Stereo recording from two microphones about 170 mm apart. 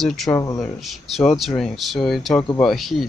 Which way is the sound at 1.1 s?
Centre (ahead or behind).